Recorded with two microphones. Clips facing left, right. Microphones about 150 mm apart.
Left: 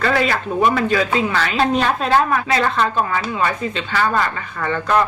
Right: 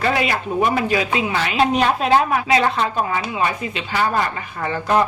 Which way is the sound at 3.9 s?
15° right (ahead or behind).